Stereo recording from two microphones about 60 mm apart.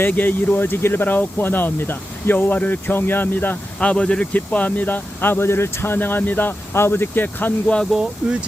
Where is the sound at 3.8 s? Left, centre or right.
Centre.